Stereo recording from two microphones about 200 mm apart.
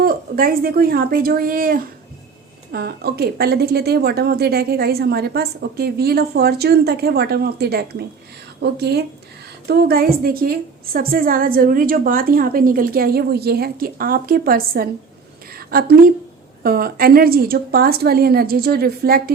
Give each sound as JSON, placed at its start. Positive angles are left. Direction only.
{"t": 0.0, "sound": "a woman's voice", "side_deg": -45}